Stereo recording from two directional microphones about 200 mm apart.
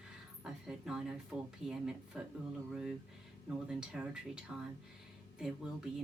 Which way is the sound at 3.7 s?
5° right (ahead or behind).